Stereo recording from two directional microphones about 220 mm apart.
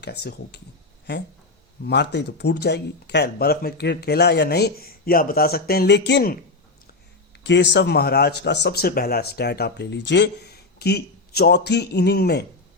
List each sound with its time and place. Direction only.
0.0 s speech: 50° left (ahead or behind)
1.8 s speech: 50° left (ahead or behind)
7.4 s speech: 50° left (ahead or behind)